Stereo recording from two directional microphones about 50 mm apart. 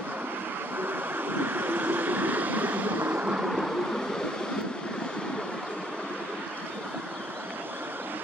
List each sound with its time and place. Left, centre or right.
0.7 s vehicle: right
3.4 s vehicle: centre